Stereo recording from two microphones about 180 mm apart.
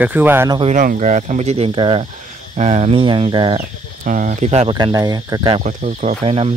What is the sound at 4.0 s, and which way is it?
Speech, 50° right (ahead or behind).